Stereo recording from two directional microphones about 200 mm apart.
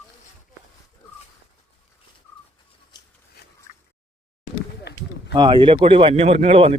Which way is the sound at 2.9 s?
20° left (ahead or behind).